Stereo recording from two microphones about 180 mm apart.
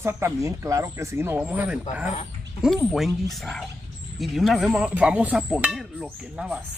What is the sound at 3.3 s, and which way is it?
Speech, 5° left (ahead or behind).